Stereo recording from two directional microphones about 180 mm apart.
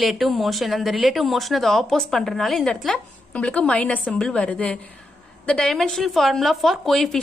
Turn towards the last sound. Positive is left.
turn(degrees=0)  # may be behind; listen again after turning